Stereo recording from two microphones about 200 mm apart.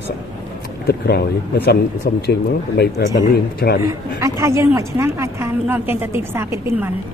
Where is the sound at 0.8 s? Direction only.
50° left (ahead or behind).